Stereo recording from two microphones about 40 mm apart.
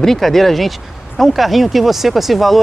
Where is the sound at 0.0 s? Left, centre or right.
Centre.